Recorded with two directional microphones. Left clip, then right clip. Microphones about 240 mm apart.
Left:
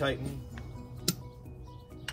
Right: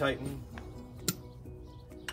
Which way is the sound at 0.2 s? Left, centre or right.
Right.